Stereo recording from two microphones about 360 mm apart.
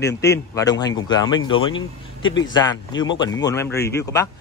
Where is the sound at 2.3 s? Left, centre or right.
Left.